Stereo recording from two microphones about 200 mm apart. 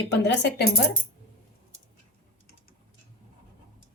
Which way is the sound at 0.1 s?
60° left (ahead or behind).